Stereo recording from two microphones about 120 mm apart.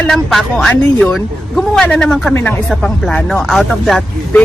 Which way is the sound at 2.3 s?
15° left (ahead or behind).